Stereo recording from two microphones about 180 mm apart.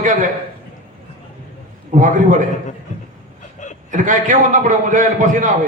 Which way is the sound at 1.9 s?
45° right (ahead or behind).